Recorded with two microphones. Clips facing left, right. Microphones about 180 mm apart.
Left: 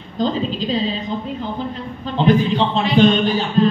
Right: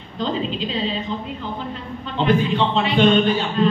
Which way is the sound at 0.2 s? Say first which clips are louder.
Left 3 dB; 40° left (ahead or behind).